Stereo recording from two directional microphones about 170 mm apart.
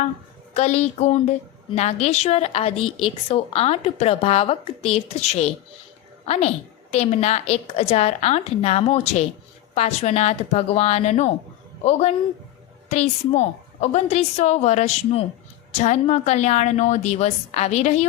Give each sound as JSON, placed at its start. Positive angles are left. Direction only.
{"t": 0.5, "sound": "a woman's voice", "side_deg": 40}